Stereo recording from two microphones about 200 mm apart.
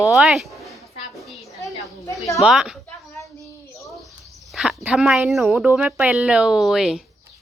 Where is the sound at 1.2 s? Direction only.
Centre (ahead or behind).